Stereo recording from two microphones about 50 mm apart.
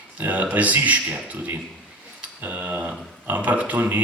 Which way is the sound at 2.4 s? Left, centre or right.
Right.